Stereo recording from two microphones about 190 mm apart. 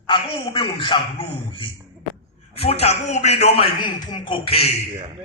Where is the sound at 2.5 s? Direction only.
30° left (ahead or behind).